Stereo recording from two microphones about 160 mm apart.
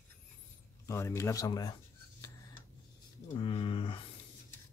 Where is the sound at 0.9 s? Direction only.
20° left (ahead or behind).